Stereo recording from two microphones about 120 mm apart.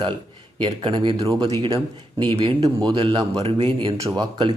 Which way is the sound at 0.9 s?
45° right (ahead or behind).